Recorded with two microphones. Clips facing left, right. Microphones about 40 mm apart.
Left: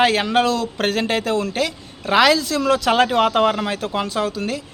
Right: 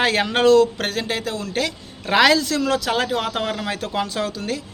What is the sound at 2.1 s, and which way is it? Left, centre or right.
Speech, centre.